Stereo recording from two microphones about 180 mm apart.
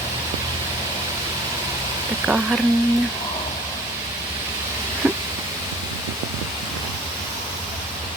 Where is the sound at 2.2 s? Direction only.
5° right (ahead or behind).